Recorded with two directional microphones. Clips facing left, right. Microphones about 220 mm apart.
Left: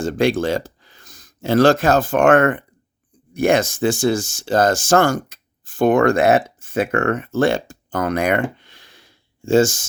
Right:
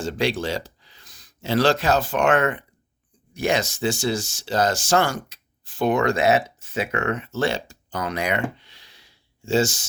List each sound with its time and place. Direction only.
0.0 s speech: 50° left (ahead or behind)